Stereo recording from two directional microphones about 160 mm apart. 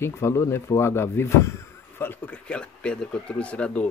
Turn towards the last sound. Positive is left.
turn(degrees=10)  # may be behind; listen again after turning